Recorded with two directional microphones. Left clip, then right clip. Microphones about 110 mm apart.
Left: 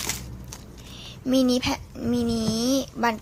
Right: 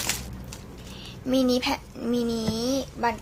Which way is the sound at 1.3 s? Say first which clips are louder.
Left 1 dB; 45° left (ahead or behind).